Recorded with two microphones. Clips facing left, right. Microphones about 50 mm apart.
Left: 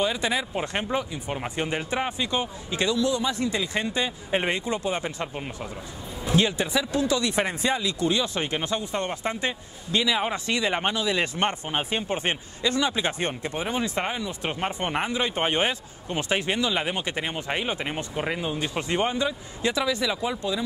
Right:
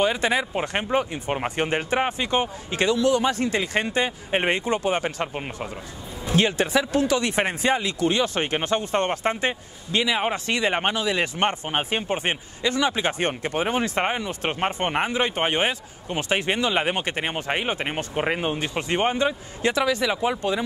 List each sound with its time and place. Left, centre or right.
0.0 s speech: right
5.2 s speech: right
6.3 s speech: right
14.9 s speech: right
15.4 s speech: right